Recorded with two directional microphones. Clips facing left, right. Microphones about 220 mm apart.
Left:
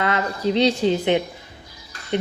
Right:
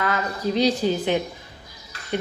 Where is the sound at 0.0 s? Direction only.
25° left (ahead or behind).